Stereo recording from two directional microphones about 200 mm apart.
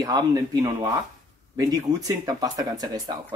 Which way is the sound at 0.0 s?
20° right (ahead or behind).